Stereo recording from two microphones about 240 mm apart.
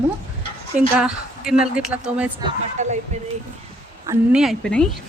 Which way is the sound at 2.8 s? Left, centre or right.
Right.